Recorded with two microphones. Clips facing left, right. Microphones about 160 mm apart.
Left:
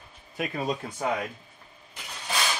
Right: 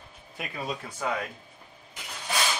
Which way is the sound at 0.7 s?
25° left (ahead or behind).